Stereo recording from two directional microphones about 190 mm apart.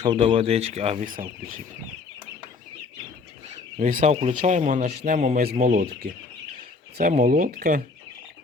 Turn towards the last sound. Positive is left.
turn(degrees=-50)  # may be behind; listen again after turning